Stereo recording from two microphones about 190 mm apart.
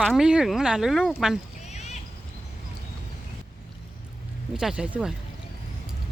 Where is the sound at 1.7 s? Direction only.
35° left (ahead or behind).